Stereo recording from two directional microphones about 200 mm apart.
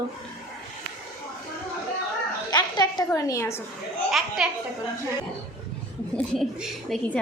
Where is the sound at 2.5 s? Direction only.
20° left (ahead or behind).